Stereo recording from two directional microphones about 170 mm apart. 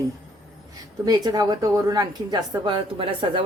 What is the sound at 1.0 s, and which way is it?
A woman's voice, 25° right (ahead or behind).